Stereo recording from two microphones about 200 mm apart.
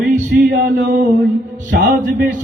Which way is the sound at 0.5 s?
60° right (ahead or behind).